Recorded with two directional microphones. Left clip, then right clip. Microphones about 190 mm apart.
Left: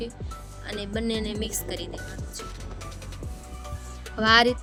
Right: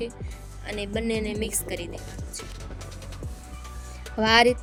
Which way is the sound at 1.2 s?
5° right (ahead or behind).